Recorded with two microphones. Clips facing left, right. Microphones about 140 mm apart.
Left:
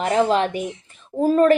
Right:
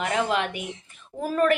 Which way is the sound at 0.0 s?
35° left (ahead or behind).